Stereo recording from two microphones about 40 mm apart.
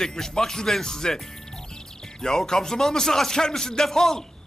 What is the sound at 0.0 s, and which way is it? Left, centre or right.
A man's voice, centre.